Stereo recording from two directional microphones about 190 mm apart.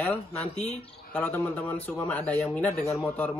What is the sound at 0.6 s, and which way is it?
Speech, 35° left (ahead or behind).